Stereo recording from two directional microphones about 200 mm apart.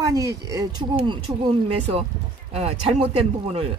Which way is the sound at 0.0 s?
15° right (ahead or behind).